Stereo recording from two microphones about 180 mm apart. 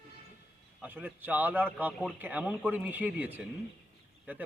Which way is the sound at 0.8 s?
10° right (ahead or behind).